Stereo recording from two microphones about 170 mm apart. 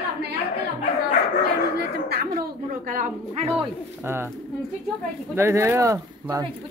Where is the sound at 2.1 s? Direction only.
65° right (ahead or behind).